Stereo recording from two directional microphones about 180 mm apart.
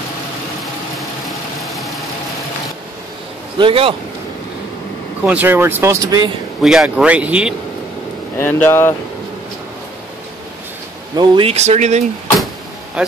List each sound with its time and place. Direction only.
0.9 s vehicle: centre (ahead or behind)
3.5 s speech: 30° right (ahead or behind)
5.2 s speech: 10° right (ahead or behind)
6.6 s speech: centre (ahead or behind)
8.4 s speech: 10° left (ahead or behind)
11.1 s speech: 30° right (ahead or behind)